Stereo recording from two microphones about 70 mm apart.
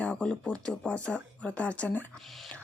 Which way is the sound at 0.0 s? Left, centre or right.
Centre.